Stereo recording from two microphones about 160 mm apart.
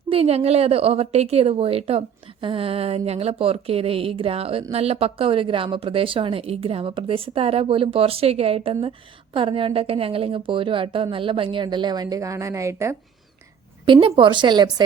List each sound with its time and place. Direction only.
0.1 s a woman's voice: 40° right (ahead or behind); by 13.0 s 20° right (ahead or behind)
13.8 s a woman's voice: 30° right (ahead or behind)